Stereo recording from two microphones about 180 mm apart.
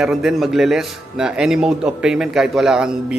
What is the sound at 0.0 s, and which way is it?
Speech, 5° right (ahead or behind).